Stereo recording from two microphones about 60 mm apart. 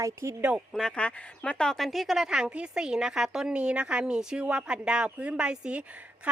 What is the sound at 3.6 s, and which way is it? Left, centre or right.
A woman's voice, right.